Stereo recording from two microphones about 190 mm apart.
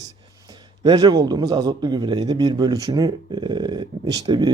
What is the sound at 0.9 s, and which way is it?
A man's voice, 20° right (ahead or behind).